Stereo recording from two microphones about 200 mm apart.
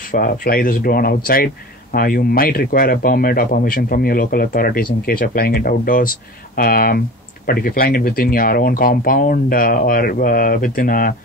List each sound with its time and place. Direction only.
0.0 s speech: 45° left (ahead or behind)